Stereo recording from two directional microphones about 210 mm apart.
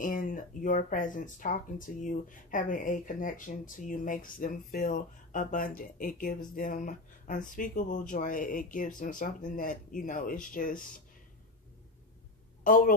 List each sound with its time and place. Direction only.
0.0 s speech: 40° left (ahead or behind)
12.6 s a woman's voice: 40° left (ahead or behind)